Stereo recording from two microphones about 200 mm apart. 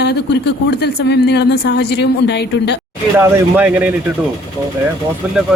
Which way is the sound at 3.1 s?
10° right (ahead or behind).